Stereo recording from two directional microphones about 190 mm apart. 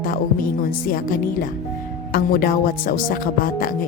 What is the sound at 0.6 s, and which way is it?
Speech, 50° left (ahead or behind).